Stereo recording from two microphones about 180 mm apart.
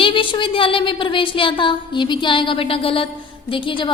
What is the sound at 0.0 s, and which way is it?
A woman's voice, 30° left (ahead or behind).